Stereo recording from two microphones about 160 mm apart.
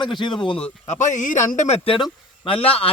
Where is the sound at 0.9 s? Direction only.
50° left (ahead or behind).